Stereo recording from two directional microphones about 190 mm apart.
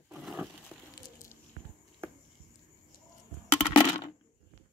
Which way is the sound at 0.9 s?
15° left (ahead or behind).